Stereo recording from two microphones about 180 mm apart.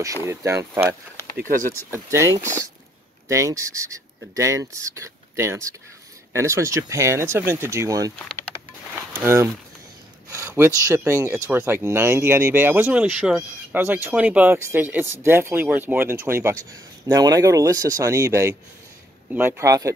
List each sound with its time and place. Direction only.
0.3 s speech: 15° right (ahead or behind)
9.1 s speech: 15° right (ahead or behind)